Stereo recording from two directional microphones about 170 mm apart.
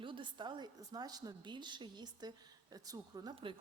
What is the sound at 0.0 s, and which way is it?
A woman's voice, 30° right (ahead or behind).